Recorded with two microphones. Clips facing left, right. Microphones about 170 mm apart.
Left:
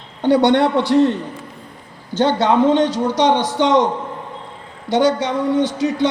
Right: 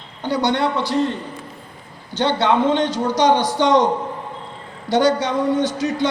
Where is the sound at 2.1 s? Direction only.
45° left (ahead or behind); by 3.8 s 20° left (ahead or behind).